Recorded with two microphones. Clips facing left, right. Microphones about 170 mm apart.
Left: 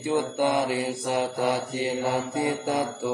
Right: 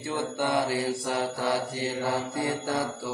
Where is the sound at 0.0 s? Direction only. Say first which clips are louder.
Left 5 dB; 15° left (ahead or behind).